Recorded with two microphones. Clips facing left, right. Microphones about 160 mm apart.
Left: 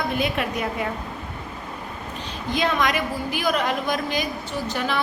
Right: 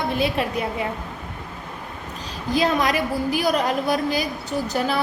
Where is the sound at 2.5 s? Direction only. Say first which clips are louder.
Right 2 dB; 35° right (ahead or behind).